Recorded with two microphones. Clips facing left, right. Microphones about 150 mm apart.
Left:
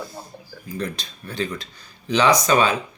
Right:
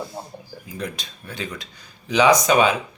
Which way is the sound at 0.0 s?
25° right (ahead or behind).